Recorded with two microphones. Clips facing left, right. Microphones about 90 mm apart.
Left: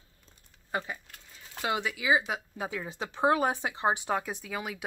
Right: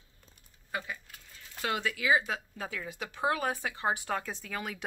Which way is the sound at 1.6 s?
15° left (ahead or behind).